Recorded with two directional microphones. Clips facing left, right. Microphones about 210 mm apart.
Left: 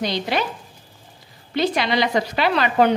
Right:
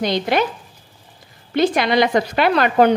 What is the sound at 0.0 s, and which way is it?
Speech, 50° right (ahead or behind).